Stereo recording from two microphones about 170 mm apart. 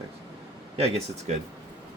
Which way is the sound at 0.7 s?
35° right (ahead or behind).